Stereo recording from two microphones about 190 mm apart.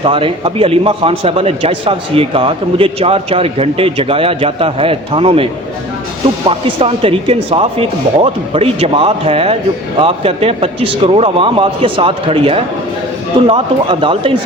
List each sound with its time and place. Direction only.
0.0 s a man's voice: 30° right (ahead or behind)
6.5 s a man's voice: 30° right (ahead or behind)